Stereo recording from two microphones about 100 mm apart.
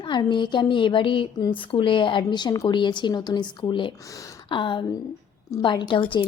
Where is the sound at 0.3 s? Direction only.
50° left (ahead or behind).